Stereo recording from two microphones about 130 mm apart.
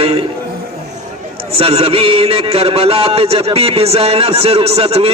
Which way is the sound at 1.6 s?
50° right (ahead or behind).